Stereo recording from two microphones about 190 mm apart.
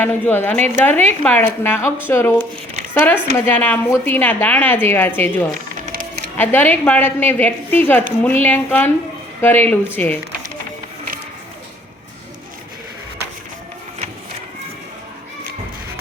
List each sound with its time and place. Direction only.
0.0 s a woman's voice: 10° left (ahead or behind)
5.8 s music: 45° right (ahead or behind)
6.3 s a woman's voice: 10° left (ahead or behind)